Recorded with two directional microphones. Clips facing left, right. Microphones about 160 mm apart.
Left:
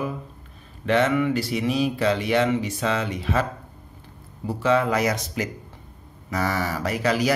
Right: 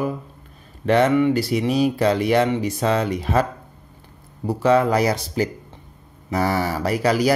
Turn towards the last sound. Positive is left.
turn(degrees=-35)  # may be behind; listen again after turning